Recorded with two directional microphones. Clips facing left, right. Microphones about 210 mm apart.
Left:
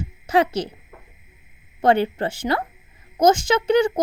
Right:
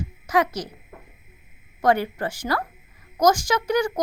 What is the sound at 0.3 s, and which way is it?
Speech, 30° left (ahead or behind).